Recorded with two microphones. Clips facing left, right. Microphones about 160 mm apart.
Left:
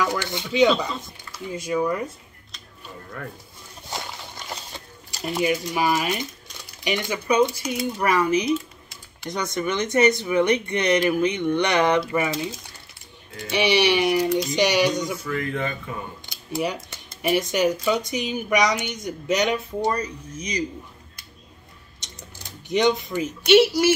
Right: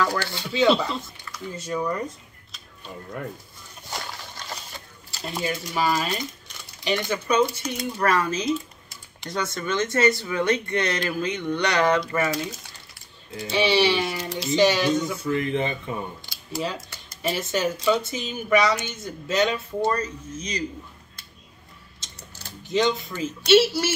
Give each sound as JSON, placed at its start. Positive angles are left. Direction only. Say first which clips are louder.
{"t": 0.0, "sound": "speech", "louder": "even", "side_deg": 20}
{"t": 5.2, "sound": "speech", "louder": "left 6 dB", "side_deg": 15}
{"t": 13.5, "sound": "speech", "louder": "left 1 dB", "side_deg": 15}
{"t": 15.2, "sound": "speech", "louder": "right 2 dB", "side_deg": -25}
{"t": 16.3, "sound": "speech", "louder": "left 6 dB", "side_deg": 20}
{"t": 22.0, "sound": "a sound", "louder": "left 2 dB", "side_deg": 20}